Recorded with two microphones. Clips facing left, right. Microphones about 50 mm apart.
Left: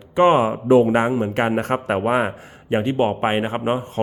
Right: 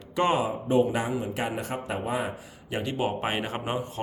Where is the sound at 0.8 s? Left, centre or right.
Left.